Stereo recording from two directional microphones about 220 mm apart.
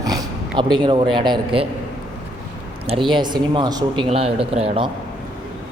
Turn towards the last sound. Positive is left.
turn(degrees=-25)  # may be behind; listen again after turning